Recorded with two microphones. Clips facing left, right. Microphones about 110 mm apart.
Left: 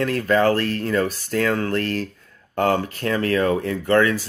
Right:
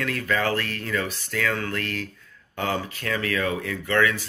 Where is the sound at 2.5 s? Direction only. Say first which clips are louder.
Left 7 dB; 50° left (ahead or behind).